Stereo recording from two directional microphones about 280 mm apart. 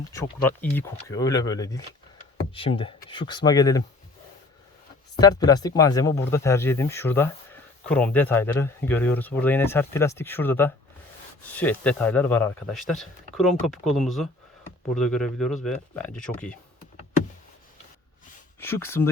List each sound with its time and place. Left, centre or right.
0.1 s speech: centre
5.1 s speech: centre
18.6 s speech: centre